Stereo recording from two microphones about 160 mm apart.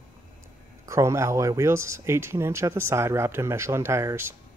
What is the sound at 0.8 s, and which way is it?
Speech, 20° right (ahead or behind).